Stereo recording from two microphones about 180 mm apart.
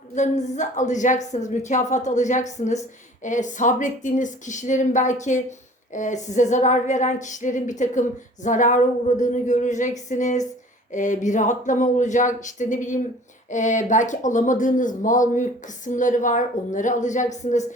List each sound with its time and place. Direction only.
0.1 s a woman's voice: 40° left (ahead or behind)